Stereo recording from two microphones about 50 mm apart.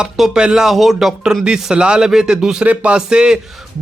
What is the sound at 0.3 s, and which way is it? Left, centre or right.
A man's voice, centre.